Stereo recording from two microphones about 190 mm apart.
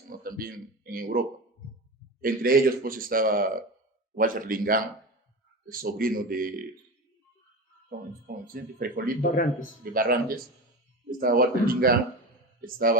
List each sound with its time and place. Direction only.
0.1 s a man's voice: 50° right (ahead or behind)
2.2 s a man's voice: 50° right (ahead or behind)
8.5 s a man's voice: 50° right (ahead or behind)
9.3 s a man's voice: 45° left (ahead or behind)
9.9 s a man's voice: 50° right (ahead or behind)